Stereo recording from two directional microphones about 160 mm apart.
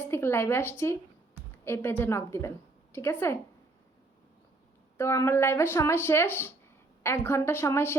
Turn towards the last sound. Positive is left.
turn(degrees=15)  # may be behind; listen again after turning